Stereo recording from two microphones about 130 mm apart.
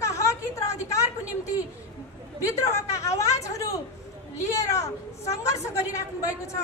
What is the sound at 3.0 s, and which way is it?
Speech, 20° left (ahead or behind).